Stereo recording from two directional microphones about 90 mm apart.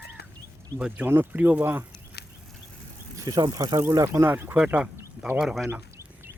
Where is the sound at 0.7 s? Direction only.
15° right (ahead or behind).